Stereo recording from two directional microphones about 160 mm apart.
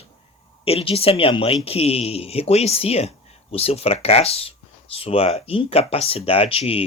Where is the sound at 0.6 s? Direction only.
35° left (ahead or behind).